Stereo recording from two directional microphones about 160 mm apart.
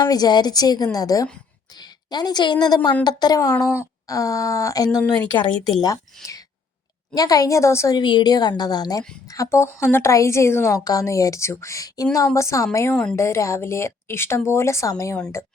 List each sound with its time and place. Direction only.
0.0 s a woman's voice: 25° left (ahead or behind)
7.1 s a woman's voice: 20° left (ahead or behind)
12.9 s a woman's voice: 5° left (ahead or behind)
13.1 s speech: 15° left (ahead or behind)